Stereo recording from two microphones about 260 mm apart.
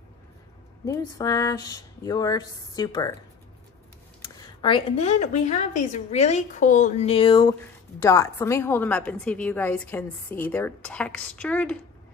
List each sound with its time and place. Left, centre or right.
0.8 s a woman's voice: centre
4.2 s a woman's voice: centre